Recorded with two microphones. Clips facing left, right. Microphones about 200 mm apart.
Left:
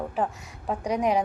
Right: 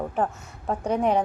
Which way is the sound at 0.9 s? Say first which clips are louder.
Right 2 dB; 30° right (ahead or behind).